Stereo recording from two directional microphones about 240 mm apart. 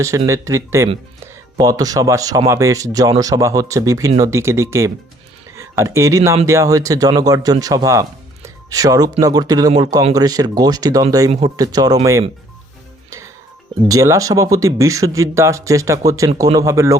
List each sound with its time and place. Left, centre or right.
0.3 s speech: centre
11.3 s speech: right
11.5 s speech: centre
13.8 s speech: centre